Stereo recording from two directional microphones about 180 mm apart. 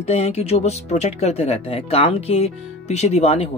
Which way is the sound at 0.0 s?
35° left (ahead or behind).